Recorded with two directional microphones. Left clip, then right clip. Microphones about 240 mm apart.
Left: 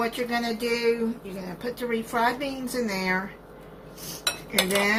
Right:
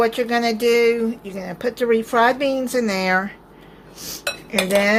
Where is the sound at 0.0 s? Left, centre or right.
Right.